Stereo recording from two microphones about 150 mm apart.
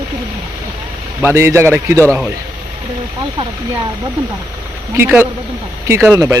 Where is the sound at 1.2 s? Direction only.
15° right (ahead or behind).